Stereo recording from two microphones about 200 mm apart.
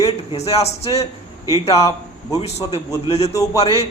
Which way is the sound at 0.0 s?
30° left (ahead or behind).